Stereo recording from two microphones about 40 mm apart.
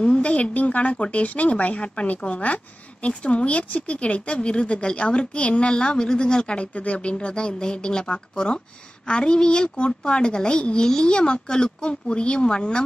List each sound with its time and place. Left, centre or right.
0.0 s a woman's voice: left